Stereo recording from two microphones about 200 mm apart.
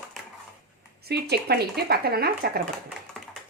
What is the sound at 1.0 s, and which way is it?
Speech, 55° right (ahead or behind).